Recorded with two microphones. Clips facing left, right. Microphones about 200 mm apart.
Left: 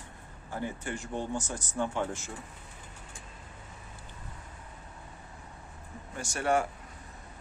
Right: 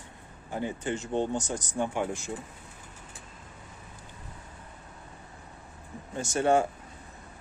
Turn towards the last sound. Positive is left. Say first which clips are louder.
# right 4 dB
turn(degrees=-25)  # may be behind; listen again after turning